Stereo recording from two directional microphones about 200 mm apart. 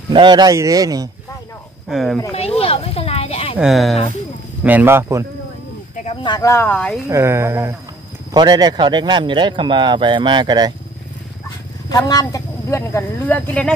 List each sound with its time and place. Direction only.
0.1 s speech: 25° right (ahead or behind)
1.9 s speech: centre (ahead or behind)
2.3 s a sound: 30° left (ahead or behind)
3.5 s speech: centre (ahead or behind)
6.2 s speech: 20° left (ahead or behind)
7.1 s speech: 15° right (ahead or behind)
11.9 s speech: 20° left (ahead or behind)